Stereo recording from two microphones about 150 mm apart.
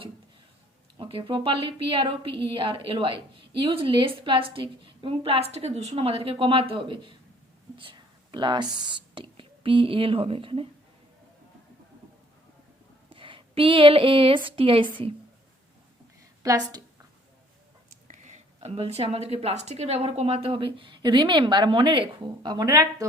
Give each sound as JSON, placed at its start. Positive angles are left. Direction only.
{"t": 0.9, "sound": "a woman's voice", "side_deg": -35}
{"t": 13.1, "sound": "speech", "side_deg": -35}
{"t": 16.4, "sound": "a woman's voice", "side_deg": -25}
{"t": 18.1, "sound": "a woman's voice", "side_deg": -50}